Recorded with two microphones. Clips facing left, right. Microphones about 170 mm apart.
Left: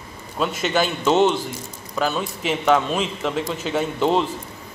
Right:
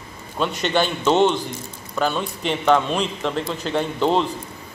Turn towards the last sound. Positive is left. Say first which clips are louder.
# even
turn(degrees=0)  # may be behind; listen again after turning